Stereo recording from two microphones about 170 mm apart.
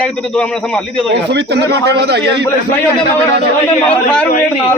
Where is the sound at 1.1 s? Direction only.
85° right.